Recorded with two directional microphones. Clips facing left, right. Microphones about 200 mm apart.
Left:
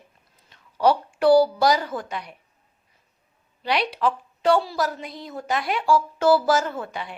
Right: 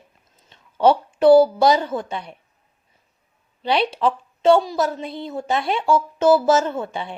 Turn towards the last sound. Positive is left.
turn(degrees=-25)  # may be behind; listen again after turning